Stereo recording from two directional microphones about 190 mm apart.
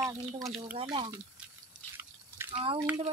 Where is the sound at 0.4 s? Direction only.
Centre (ahead or behind).